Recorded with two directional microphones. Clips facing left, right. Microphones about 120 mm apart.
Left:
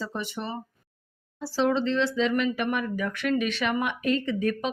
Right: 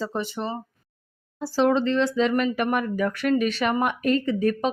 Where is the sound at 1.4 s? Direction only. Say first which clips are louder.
Right 4 dB; 50° right (ahead or behind).